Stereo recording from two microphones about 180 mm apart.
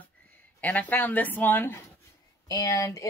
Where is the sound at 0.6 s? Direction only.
10° left (ahead or behind).